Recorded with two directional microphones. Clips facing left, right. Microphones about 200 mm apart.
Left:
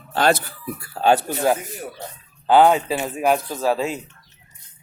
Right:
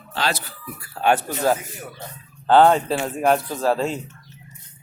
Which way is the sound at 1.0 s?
35° left (ahead or behind).